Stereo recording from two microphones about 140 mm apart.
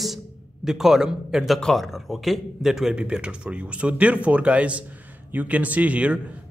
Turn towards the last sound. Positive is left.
turn(degrees=-10)  # may be behind; listen again after turning